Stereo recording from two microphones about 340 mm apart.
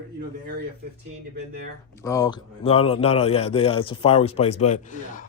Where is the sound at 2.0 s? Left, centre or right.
Centre.